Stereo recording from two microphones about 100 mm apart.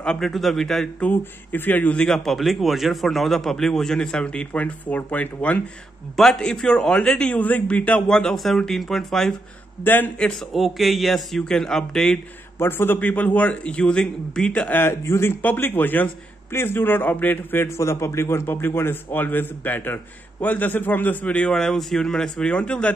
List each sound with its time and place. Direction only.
0.0 s speech: 5° left (ahead or behind)
1.0 s a man's voice: 20° left (ahead or behind)
6.1 s a man's voice: 5° left (ahead or behind)
9.8 s a man's voice: 15° left (ahead or behind)
10.5 s speech: centre (ahead or behind)
12.5 s a man's voice: 20° left (ahead or behind)